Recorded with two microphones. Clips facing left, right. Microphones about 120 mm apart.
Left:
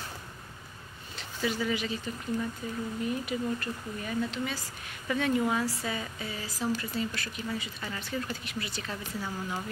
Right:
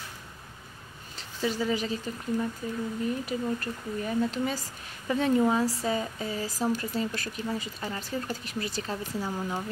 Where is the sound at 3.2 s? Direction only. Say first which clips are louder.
Right 2 dB; 35° right (ahead or behind).